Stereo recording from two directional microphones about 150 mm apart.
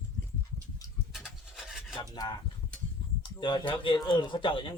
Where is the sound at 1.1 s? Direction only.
5° right (ahead or behind).